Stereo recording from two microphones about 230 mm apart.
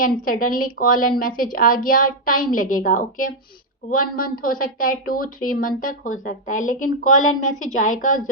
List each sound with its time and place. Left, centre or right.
0.0 s a woman's voice: left